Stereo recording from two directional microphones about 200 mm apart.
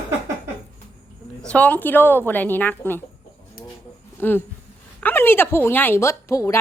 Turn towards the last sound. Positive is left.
turn(degrees=15)  # may be behind; listen again after turning